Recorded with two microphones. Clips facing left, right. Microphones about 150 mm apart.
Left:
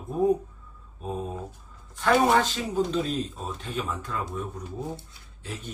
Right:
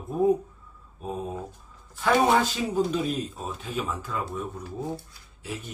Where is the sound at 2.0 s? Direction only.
Centre (ahead or behind).